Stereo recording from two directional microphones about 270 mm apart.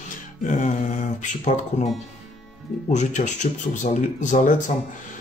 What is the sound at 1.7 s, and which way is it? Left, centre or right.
Speech, left.